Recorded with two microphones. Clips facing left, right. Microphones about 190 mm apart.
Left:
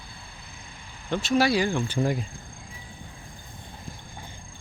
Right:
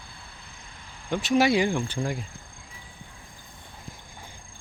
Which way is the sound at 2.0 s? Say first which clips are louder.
Left 4 dB; 25° left (ahead or behind).